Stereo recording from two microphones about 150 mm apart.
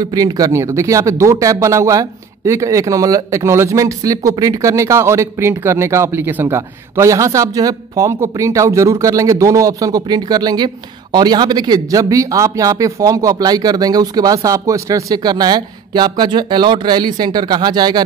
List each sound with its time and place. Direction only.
0.0 s speech: 25° right (ahead or behind)